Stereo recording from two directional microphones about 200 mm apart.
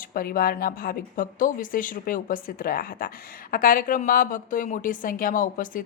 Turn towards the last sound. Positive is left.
turn(degrees=40)  # may be behind; listen again after turning